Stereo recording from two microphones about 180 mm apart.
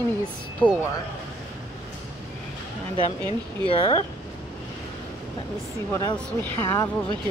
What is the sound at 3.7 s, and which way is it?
Speech, 25° left (ahead or behind).